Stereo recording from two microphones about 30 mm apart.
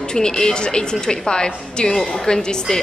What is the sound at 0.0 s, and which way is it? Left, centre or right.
A woman's voice, left.